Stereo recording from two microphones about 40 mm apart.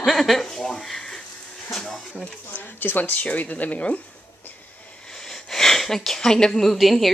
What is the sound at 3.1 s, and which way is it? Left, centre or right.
Speech, left.